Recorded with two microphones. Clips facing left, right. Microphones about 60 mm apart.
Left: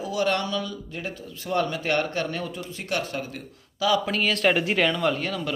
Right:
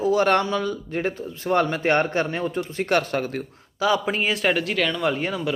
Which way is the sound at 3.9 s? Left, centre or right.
Right.